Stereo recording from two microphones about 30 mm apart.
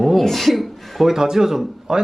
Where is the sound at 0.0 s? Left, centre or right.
Centre.